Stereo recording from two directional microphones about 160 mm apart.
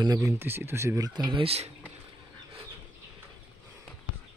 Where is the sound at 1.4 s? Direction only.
40° right (ahead or behind).